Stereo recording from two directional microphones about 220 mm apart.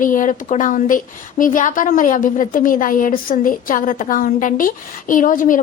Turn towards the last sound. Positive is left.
turn(degrees=40)  # may be behind; listen again after turning